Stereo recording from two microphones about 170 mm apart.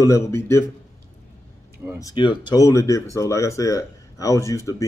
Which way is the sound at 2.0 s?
25° left (ahead or behind).